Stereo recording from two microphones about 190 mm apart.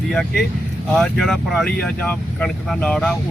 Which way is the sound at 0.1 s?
Centre (ahead or behind).